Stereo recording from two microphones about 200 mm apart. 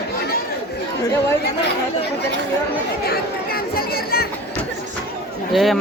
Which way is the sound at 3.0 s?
50° left (ahead or behind).